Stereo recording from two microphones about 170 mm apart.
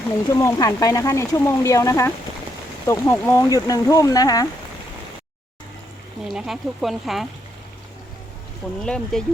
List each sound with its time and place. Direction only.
0.3 s speech: 20° left (ahead or behind)
6.2 s speech: centre (ahead or behind)
8.8 s speech: 5° left (ahead or behind)